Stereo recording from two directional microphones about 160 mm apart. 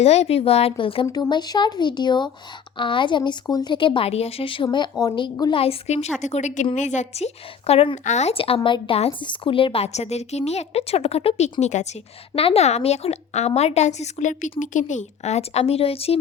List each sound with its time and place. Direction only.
0.0 s a woman's voice: 40° left (ahead or behind)
1.0 s a woman's voice: 20° left (ahead or behind); by 16.1 s 40° left (ahead or behind)